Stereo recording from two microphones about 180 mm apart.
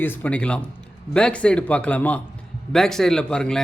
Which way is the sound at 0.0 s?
10° left (ahead or behind).